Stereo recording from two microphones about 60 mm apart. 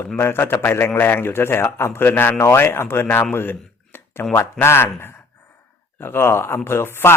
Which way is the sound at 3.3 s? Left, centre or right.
Left.